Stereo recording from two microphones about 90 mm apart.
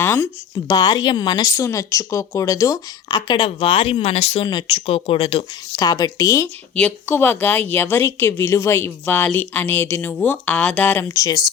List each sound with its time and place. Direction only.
0.0 s a sound: 30° left (ahead or behind)
0.7 s speech: 50° left (ahead or behind)
1.5 s speech: 35° left (ahead or behind)
3.1 s speech: 55° left (ahead or behind); by 5.5 s 90° left
5.7 s speech: 45° left (ahead or behind)
7.1 s a woman's voice: 20° left (ahead or behind)
10.8 s a woman's voice: 20° left (ahead or behind)
11.1 s speech: 35° left (ahead or behind)